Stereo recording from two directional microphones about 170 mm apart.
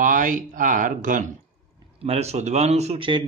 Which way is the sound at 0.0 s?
50° right (ahead or behind).